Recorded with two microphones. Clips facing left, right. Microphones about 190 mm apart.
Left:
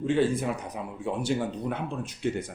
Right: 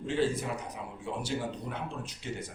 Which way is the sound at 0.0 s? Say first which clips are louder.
Left 5 dB; 55° left (ahead or behind).